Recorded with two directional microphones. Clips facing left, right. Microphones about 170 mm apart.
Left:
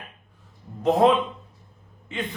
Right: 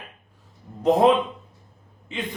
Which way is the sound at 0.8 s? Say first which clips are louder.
Right 1 dB; 15° right (ahead or behind).